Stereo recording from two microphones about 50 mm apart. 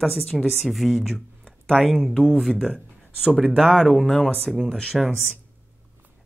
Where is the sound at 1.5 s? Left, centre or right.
Centre.